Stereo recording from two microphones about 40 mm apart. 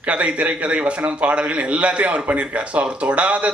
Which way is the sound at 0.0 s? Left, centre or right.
Right.